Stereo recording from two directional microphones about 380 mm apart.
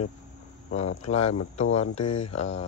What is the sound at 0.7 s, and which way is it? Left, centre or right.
Speech, centre.